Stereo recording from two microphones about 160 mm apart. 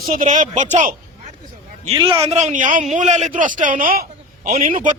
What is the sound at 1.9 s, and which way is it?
A man's voice, 30° right (ahead or behind).